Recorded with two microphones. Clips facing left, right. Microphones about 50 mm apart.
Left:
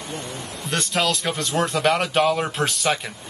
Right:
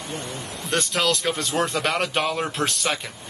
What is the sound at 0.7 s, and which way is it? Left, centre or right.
Speech, centre.